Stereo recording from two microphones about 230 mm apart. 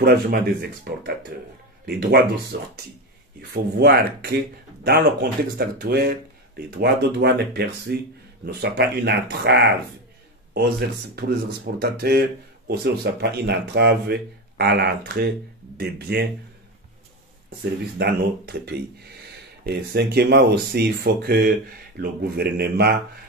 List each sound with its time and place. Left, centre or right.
0.0 s speech: right
3.3 s speech: right
5.6 s speech: right
17.9 s speech: right